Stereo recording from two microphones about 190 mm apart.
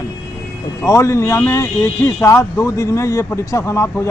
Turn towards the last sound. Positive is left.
turn(degrees=15)  # may be behind; listen again after turning